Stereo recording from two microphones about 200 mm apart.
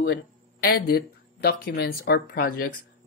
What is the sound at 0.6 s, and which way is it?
Speech, 50° left (ahead or behind).